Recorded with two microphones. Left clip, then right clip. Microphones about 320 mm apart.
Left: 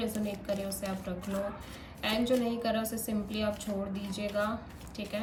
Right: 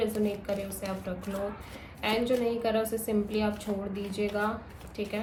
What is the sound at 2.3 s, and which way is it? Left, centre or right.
A woman's voice, centre.